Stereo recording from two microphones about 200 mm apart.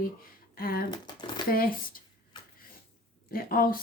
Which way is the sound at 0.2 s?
45° left (ahead or behind).